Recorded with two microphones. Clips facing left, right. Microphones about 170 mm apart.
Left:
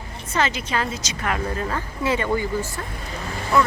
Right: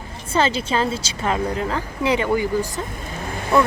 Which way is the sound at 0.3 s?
30° right (ahead or behind).